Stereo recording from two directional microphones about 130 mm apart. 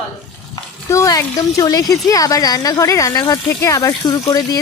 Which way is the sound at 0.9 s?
25° left (ahead or behind).